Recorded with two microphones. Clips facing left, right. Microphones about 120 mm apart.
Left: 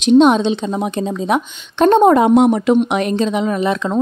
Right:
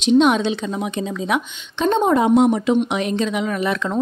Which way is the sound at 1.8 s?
60° left (ahead or behind).